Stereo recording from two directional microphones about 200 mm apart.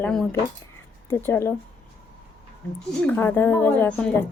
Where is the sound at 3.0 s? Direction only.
10° left (ahead or behind).